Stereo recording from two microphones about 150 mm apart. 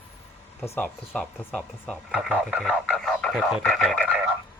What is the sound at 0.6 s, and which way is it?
Speech, 15° left (ahead or behind).